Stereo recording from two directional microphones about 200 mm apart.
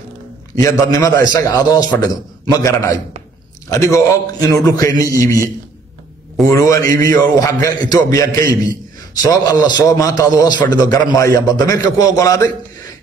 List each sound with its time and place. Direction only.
0.6 s a man's voice: 15° left (ahead or behind)
6.4 s a man's voice: 15° left (ahead or behind)